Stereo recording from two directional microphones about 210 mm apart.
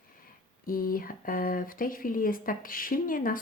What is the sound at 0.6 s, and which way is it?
Speech, 40° left (ahead or behind).